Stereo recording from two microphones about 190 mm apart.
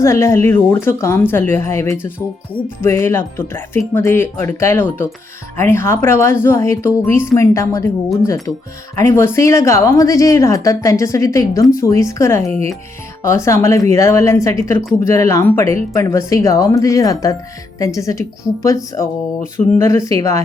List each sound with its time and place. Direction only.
0.0 s a woman's voice: 15° left (ahead or behind)
9.0 s a woman's voice: 15° left (ahead or behind)